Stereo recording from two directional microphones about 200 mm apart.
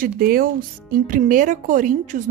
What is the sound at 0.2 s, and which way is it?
A woman's voice, 45° right (ahead or behind).